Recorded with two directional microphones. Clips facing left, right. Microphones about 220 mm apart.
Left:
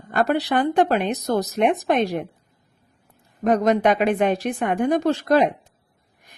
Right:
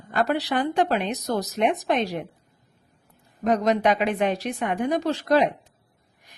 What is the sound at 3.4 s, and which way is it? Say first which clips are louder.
A woman's voice: left 3 dB; 50° left (ahead or behind).